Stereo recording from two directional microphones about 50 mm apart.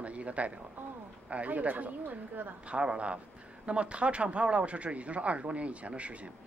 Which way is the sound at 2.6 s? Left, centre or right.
Right.